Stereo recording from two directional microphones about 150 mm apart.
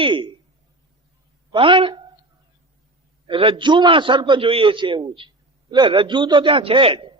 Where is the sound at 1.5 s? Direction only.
35° right (ahead or behind).